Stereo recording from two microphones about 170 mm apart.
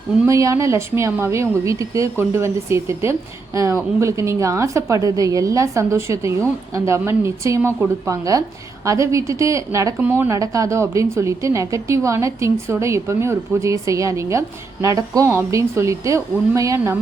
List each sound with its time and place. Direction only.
0.3 s a woman's voice: 20° right (ahead or behind)